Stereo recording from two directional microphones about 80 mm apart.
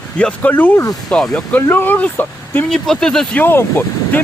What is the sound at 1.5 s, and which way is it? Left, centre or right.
Speech, left.